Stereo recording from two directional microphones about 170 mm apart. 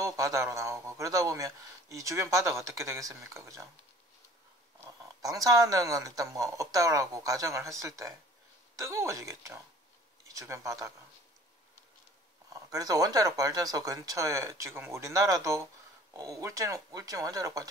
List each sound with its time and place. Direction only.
0.0 s a man's voice: 20° right (ahead or behind)
4.7 s a man's voice: 20° right (ahead or behind)
12.5 s speech: 20° right (ahead or behind)